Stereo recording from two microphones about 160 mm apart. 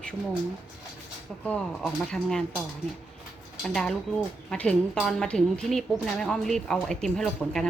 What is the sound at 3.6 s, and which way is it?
A woman's voice, 5° left (ahead or behind).